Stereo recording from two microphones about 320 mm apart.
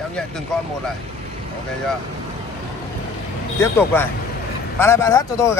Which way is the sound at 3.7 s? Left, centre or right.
Centre.